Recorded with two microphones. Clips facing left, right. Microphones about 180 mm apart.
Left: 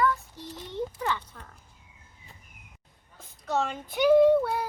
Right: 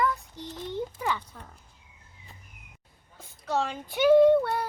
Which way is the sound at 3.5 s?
Centre (ahead or behind).